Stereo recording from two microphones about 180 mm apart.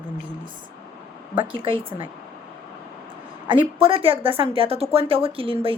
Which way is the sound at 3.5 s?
30° right (ahead or behind).